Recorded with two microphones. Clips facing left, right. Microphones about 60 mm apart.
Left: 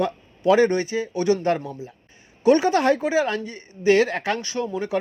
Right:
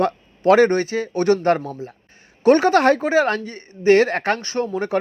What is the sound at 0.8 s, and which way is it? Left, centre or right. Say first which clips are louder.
A man's voice: right 3 dB; right.